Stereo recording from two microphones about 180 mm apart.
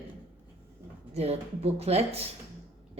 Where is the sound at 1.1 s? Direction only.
35° right (ahead or behind).